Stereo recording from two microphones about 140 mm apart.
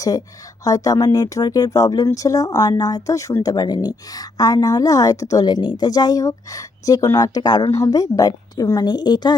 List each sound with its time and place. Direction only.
0.0 s speech: 25° left (ahead or behind)